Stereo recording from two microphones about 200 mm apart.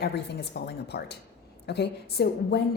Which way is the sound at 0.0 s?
55° left (ahead or behind).